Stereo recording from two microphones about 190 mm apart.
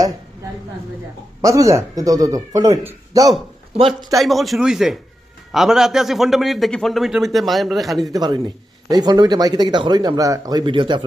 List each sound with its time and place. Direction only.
1.4 s speech: 15° right (ahead or behind)
4.2 s a man's voice: centre (ahead or behind)
8.1 s speech: 20° right (ahead or behind)